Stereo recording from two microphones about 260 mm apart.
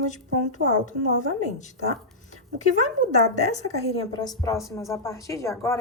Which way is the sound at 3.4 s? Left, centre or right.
Left.